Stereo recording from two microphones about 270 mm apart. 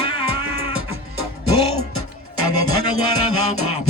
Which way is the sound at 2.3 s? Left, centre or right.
Left.